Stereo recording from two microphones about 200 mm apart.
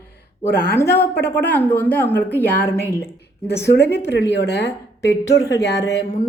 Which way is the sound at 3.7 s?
55° left (ahead or behind).